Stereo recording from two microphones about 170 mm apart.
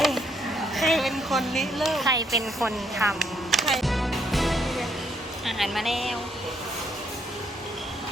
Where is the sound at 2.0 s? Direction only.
20° right (ahead or behind).